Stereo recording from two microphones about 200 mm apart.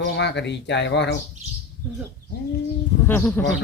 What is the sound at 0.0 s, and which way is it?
Speech, 60° left (ahead or behind).